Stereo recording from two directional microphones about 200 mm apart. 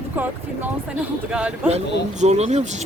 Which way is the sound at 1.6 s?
30° right (ahead or behind).